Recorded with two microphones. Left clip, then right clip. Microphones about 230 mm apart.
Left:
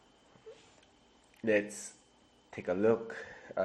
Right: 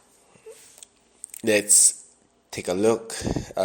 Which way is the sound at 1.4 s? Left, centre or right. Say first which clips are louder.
Right 8 dB; right.